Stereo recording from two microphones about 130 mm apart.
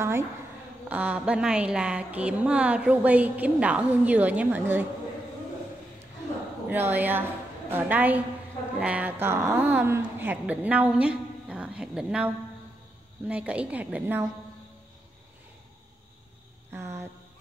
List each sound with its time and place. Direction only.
0.8 s a woman's voice: 10° right (ahead or behind)
6.7 s a woman's voice: 15° right (ahead or behind)
13.3 s a woman's voice: 10° right (ahead or behind)
16.7 s a sound: 20° right (ahead or behind)